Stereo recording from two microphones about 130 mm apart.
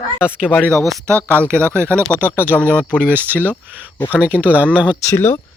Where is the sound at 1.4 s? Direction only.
20° right (ahead or behind).